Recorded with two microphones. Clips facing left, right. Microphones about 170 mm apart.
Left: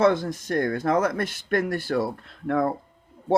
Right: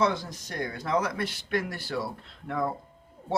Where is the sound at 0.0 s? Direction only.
55° left (ahead or behind).